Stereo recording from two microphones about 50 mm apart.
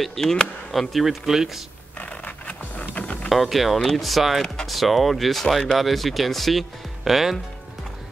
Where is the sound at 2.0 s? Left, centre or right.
Left.